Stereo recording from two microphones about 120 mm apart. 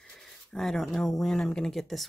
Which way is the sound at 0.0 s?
5° left (ahead or behind).